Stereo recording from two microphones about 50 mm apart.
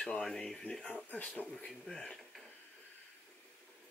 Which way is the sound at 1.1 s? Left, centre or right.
Left.